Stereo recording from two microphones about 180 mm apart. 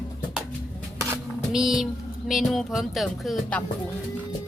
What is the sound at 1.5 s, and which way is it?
Music, centre (ahead or behind).